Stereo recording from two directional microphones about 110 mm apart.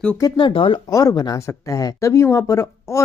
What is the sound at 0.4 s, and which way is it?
Speech, 50° left (ahead or behind).